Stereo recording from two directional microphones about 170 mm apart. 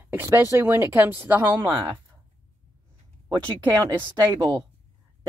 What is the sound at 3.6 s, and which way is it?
Speech, 10° right (ahead or behind).